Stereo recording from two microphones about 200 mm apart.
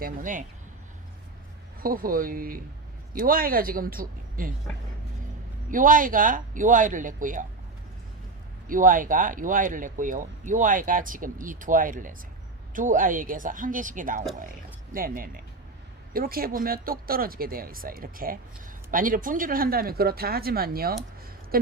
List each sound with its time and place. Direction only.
0.0 s speech: 40° right (ahead or behind)
1.8 s speech: 45° right (ahead or behind)
5.7 s speech: 40° right (ahead or behind)
8.6 s speech: 45° right (ahead or behind)